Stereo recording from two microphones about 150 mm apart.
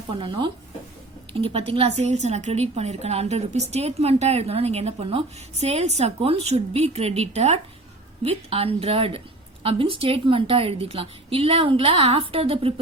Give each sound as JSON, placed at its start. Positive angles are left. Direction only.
{"t": 0.1, "sound": "a woman's voice", "side_deg": -35}